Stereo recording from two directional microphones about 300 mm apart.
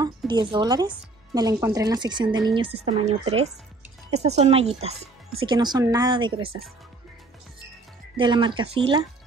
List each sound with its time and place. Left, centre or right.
0.0 s speech: centre
8.2 s speech: centre